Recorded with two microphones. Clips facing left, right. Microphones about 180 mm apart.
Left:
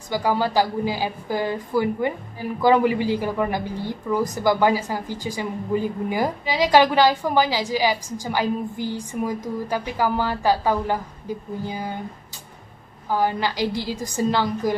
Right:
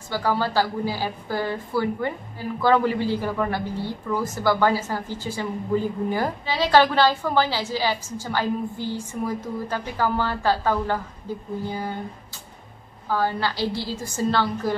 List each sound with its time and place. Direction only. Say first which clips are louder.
0.1 s speech: left 2 dB; 15° left (ahead or behind)
13.1 s speech: left 2 dB; 15° left (ahead or behind)